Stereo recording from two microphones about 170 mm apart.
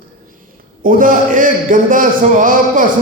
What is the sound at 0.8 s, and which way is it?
A man's voice, 50° right (ahead or behind).